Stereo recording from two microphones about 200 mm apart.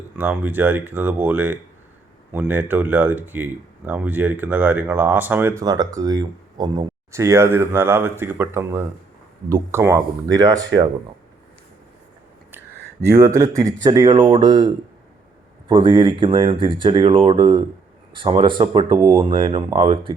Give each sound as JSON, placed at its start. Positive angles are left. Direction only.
{"t": 0.2, "sound": "speech", "side_deg": -10}
{"t": 13.1, "sound": "speech", "side_deg": -15}
{"t": 15.7, "sound": "speech", "side_deg": -25}